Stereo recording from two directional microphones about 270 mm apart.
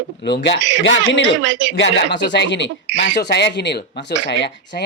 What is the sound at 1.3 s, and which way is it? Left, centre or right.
Speech, right.